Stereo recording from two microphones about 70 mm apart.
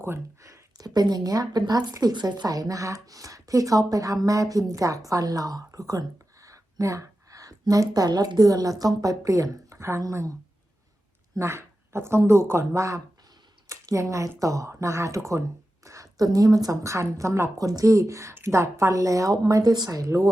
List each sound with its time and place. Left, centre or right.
0.4 s a sound: right
0.9 s speech: right
11.3 s speech: right
16.9 s speech: right
17.6 s speech: right